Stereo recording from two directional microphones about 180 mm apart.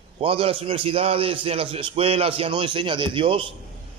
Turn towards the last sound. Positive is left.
turn(degrees=-30)  # may be behind; listen again after turning